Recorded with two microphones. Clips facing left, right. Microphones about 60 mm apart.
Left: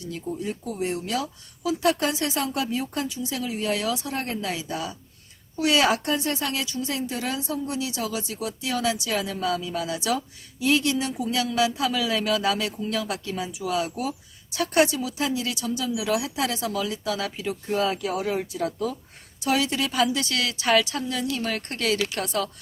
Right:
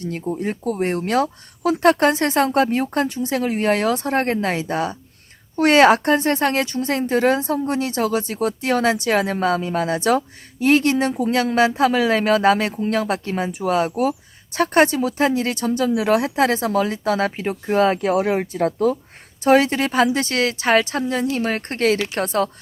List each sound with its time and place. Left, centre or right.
0.0 s a woman's voice: right